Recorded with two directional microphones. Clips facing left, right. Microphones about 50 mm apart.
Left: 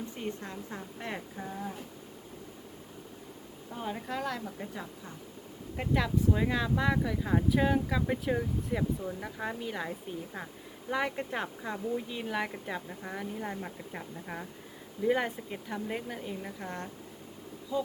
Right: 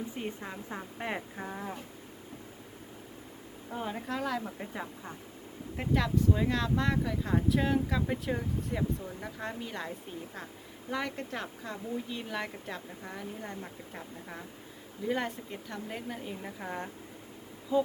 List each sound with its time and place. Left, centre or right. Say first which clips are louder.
0.2 s a woman's voice: even; centre
3.7 s speech: right 1 dB; centre
4.4 s a woman's voice: right 1 dB; centre
5.7 s speech: even; centre
17.7 s a woman's voice: right 5 dB; right